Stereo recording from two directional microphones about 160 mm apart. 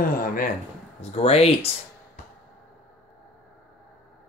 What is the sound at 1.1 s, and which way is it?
Speech, 40° left (ahead or behind).